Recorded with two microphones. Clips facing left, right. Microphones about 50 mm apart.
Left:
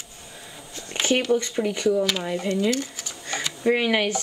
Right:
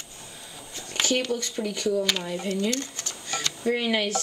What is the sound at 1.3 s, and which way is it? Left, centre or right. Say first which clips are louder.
Speech: left 6 dB; left.